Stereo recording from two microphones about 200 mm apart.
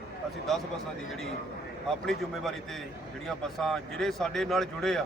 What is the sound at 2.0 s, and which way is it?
A man's voice, centre (ahead or behind).